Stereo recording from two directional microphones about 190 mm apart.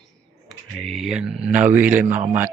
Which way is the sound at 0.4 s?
Centre (ahead or behind).